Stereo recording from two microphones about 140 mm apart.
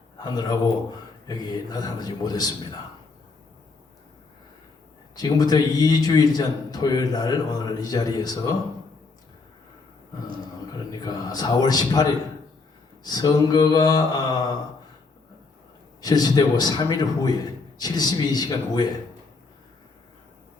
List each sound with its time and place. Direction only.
0.2 s a man's voice: 30° left (ahead or behind)
5.1 s a man's voice: 30° left (ahead or behind)
11.0 s a man's voice: 30° left (ahead or behind)
16.0 s a man's voice: 30° left (ahead or behind)